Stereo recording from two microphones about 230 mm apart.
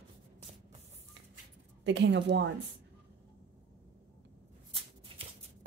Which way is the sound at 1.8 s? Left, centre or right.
Right.